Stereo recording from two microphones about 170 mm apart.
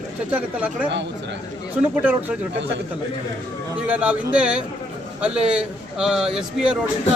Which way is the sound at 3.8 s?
10° right (ahead or behind).